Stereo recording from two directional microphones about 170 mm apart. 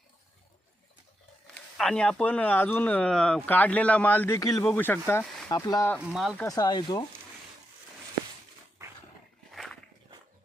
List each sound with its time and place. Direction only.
1.8 s speech: 5° left (ahead or behind); by 5.9 s 20° left (ahead or behind)
6.0 s speech: 5° right (ahead or behind)
6.3 s speech: 15° left (ahead or behind)
9.5 s dog: centre (ahead or behind)